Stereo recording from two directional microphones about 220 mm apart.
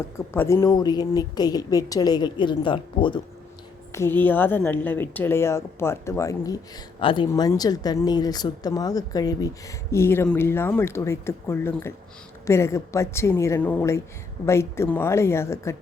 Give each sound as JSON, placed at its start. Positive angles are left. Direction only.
{"t": 0.3, "sound": "speech", "side_deg": 10}
{"t": 3.9, "sound": "speech", "side_deg": 10}